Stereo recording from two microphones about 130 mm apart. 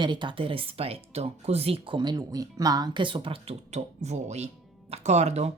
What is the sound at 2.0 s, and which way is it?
Speech, 30° right (ahead or behind).